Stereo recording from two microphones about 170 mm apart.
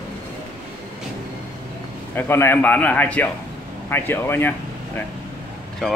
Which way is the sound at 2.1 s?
15° left (ahead or behind).